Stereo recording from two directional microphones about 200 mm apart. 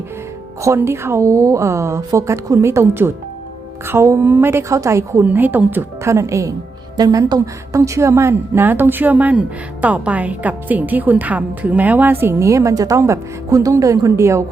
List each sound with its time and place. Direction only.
0.6 s a woman's voice: 15° right (ahead or behind)